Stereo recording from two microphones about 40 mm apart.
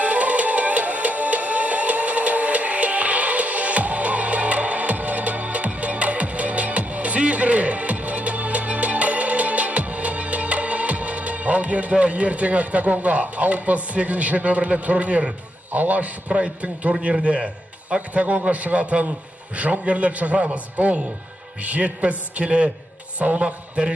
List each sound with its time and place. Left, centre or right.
0.0 s music: right
15.7 s a man's voice: right